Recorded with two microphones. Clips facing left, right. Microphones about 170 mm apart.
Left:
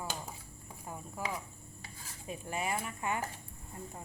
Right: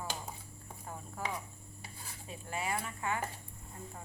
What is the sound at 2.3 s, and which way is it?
Chopping, 20° left (ahead or behind).